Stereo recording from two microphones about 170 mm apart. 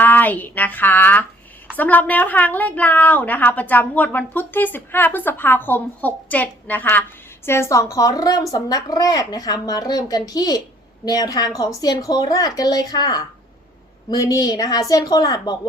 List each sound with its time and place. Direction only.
0.0 s a woman's voice: 10° left (ahead or behind)